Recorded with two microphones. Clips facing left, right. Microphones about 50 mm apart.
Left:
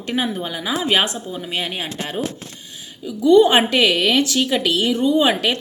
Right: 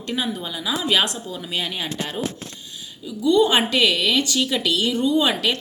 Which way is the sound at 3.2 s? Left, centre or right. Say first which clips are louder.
Left 5 dB; left.